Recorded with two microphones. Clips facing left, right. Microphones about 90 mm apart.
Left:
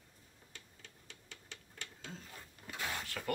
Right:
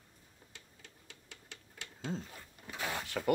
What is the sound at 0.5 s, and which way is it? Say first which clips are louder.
Typewriter: left 1 dB; 5° right (ahead or behind).